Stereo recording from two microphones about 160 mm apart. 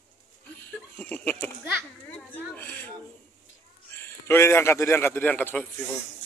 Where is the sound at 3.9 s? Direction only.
15° left (ahead or behind).